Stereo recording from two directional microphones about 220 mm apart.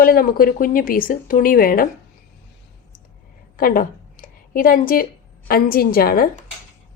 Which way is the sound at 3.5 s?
40° left (ahead or behind).